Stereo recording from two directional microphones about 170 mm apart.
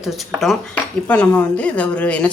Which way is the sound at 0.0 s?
Centre (ahead or behind).